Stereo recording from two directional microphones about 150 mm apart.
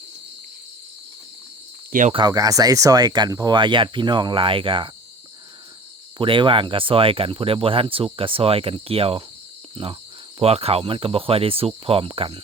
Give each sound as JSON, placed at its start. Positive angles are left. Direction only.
{"t": 1.9, "sound": "cricket", "side_deg": -60}
{"t": 2.1, "sound": "speech", "side_deg": -25}
{"t": 6.1, "sound": "speech", "side_deg": -35}